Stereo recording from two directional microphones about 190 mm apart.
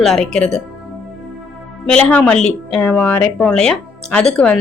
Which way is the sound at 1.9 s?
5° left (ahead or behind).